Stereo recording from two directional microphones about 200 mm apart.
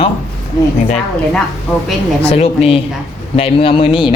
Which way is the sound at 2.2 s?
30° left (ahead or behind).